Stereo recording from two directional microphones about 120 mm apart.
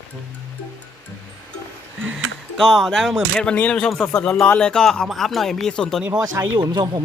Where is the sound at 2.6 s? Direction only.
5° left (ahead or behind).